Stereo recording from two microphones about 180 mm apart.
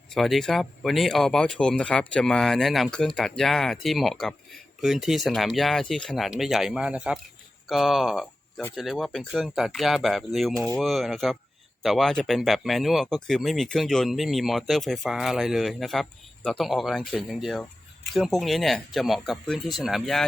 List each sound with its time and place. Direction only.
0.1 s speech: centre (ahead or behind)